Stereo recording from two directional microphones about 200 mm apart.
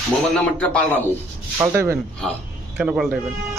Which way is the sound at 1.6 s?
15° right (ahead or behind).